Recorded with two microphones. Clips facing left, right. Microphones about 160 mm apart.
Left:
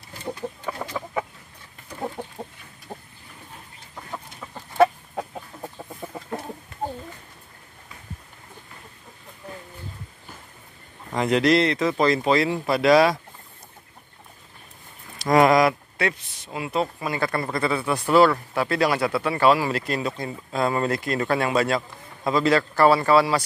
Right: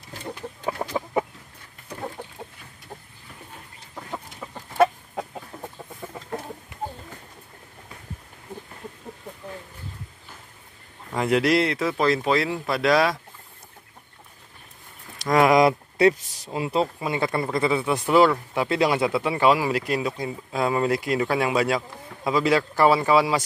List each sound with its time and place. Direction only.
0.8 s chicken: 30° right (ahead or behind)
2.4 s chicken: 30° left (ahead or behind)
2.9 s vehicle: 15° left (ahead or behind)
4.1 s chicken: 10° right (ahead or behind)
11.1 s speech: 5° right (ahead or behind)
15.1 s a sound: centre (ahead or behind)
16.5 s speech: 30° right (ahead or behind)